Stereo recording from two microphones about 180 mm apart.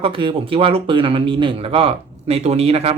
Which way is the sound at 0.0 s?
30° right (ahead or behind).